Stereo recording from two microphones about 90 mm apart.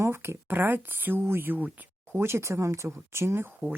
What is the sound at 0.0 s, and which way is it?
Speech, 30° right (ahead or behind).